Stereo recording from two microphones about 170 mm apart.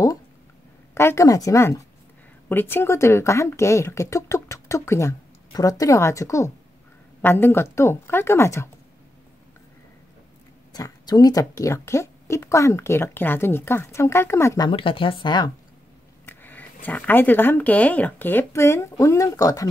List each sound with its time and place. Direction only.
0.9 s speech: 15° left (ahead or behind)
10.7 s speech: 20° left (ahead or behind)
14.7 s speech: 30° left (ahead or behind)
16.3 s speech: 10° left (ahead or behind)